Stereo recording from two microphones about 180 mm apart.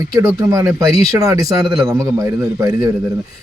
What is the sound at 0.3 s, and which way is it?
A man's voice, 20° right (ahead or behind).